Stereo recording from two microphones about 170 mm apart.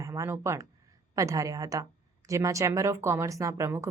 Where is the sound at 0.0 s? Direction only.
20° right (ahead or behind).